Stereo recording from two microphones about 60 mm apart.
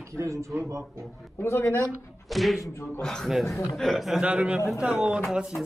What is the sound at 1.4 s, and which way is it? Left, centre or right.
Speech, left.